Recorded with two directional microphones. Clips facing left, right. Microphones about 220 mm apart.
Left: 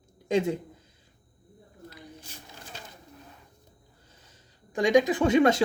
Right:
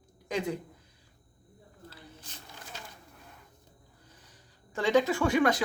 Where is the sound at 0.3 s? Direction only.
25° left (ahead or behind).